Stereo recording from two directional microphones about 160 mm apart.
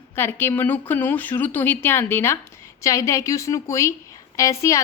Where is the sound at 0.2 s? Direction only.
15° left (ahead or behind).